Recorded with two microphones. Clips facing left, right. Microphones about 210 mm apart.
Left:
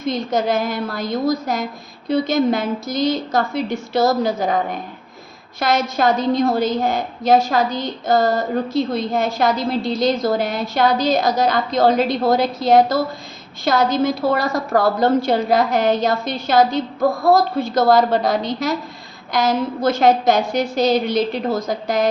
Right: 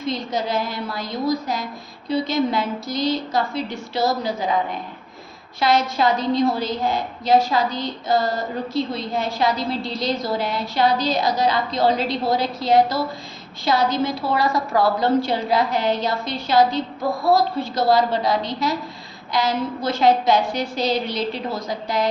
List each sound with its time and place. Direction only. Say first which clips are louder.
0.0 s a woman's voice: left 4 dB; 45° left (ahead or behind)